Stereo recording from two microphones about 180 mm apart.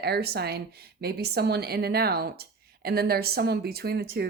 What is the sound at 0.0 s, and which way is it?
A woman's voice, 65° right (ahead or behind).